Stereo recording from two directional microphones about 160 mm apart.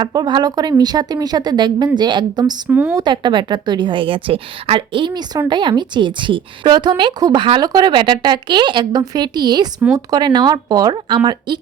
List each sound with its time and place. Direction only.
0.0 s a woman's voice: 25° right (ahead or behind)
2.6 s speech: 10° right (ahead or behind)
2.9 s a woman's voice: 30° right (ahead or behind)